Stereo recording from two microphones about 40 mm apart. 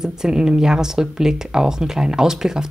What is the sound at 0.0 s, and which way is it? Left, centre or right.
Speech, centre.